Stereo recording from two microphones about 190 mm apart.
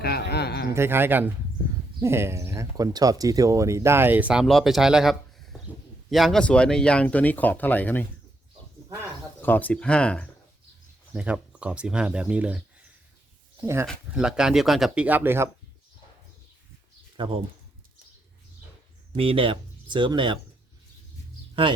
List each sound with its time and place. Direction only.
0.0 s a sound: 60° left (ahead or behind)
0.7 s speech: 10° right (ahead or behind); by 8.0 s 10° left (ahead or behind)
9.4 s speech: 10° left (ahead or behind)
11.1 s speech: 5° right (ahead or behind)
13.8 s speech: 5° right (ahead or behind)
17.2 s speech: 25° right (ahead or behind)
19.1 s speech: 30° right (ahead or behind)